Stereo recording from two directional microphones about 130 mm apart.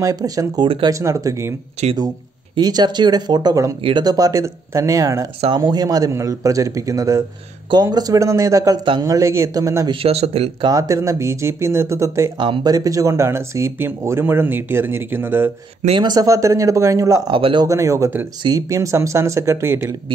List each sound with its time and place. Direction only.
0.0 s speech: 25° right (ahead or behind)
2.5 s speech: 35° right (ahead or behind)
10.0 s speech: 50° right (ahead or behind)
10.7 s speech: 25° right (ahead or behind)
12.4 s speech: 35° right (ahead or behind); by 15.5 s 15° right (ahead or behind)
16.0 s speech: 30° right (ahead or behind)
17.3 s speech: 40° right (ahead or behind)
17.6 s speech: 25° right (ahead or behind)